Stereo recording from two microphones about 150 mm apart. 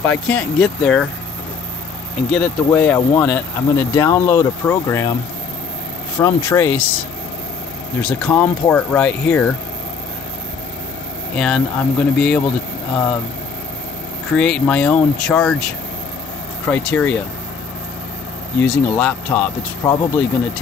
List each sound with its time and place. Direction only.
0.0 s speech: 5° left (ahead or behind)
2.3 s speech: 10° left (ahead or behind)
6.1 s speech: 20° left (ahead or behind)
8.0 s speech: 10° left (ahead or behind)
11.3 s speech: 5° left (ahead or behind)
14.3 s speech: 5° left (ahead or behind)
18.6 s speech: 10° left (ahead or behind)